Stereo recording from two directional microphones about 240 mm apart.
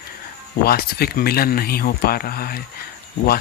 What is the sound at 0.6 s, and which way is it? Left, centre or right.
Speech, left.